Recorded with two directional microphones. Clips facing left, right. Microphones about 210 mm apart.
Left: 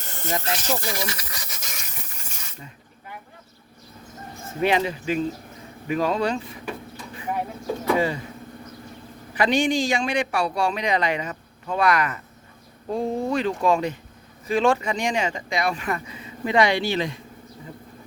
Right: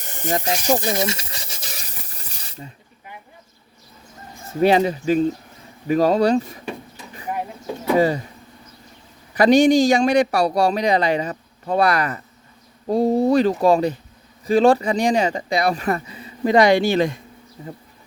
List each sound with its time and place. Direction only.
0.0 s rub: 15° right (ahead or behind); by 2.6 s 35° right (ahead or behind)
4.6 s a man's voice: 35° right (ahead or behind)
7.9 s a man's voice: 40° right (ahead or behind)
9.3 s a man's voice: 40° right (ahead or behind)